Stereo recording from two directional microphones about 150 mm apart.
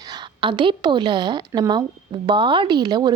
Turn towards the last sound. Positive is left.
turn(degrees=-25)  # may be behind; listen again after turning